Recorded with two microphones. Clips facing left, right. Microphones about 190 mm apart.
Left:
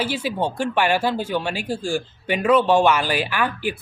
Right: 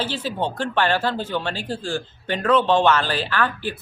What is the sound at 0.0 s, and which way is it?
Speech, 10° left (ahead or behind).